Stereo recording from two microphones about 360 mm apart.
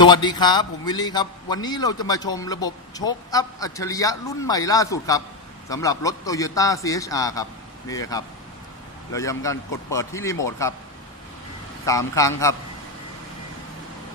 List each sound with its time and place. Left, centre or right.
0.0 s a man's voice: centre
11.8 s a man's voice: centre